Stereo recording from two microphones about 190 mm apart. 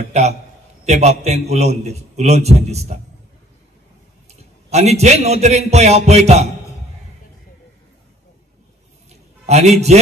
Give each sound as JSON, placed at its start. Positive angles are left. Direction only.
{"t": 0.1, "sound": "a man's voice", "side_deg": -35}
{"t": 4.3, "sound": "a man's voice", "side_deg": -35}
{"t": 9.1, "sound": "a sound", "side_deg": -35}